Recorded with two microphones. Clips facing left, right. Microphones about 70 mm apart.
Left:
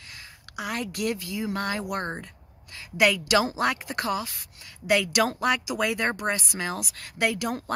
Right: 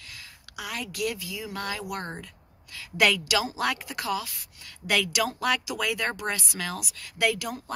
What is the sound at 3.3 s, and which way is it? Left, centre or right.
Speech, left.